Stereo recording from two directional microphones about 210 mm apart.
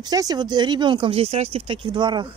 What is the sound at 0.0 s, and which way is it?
Speech, 20° right (ahead or behind).